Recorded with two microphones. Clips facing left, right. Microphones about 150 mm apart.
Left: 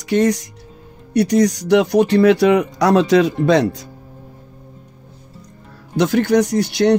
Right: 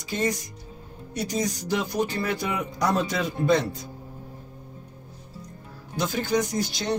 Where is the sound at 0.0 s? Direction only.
75° left (ahead or behind); by 3.9 s 90° left.